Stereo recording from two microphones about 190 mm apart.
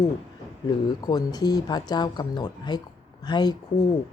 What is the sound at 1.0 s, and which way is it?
Speech, 20° left (ahead or behind).